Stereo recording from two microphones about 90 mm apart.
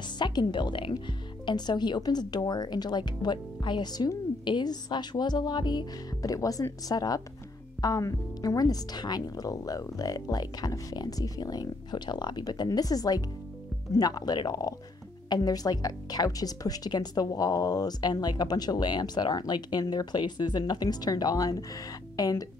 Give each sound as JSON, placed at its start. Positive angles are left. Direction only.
{"t": 0.2, "sound": "speech", "side_deg": 55}